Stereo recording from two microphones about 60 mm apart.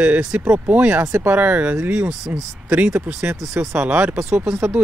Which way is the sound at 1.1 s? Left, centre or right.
Right.